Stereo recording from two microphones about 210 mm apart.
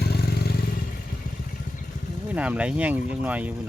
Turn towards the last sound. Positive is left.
turn(degrees=-5)  # may be behind; listen again after turning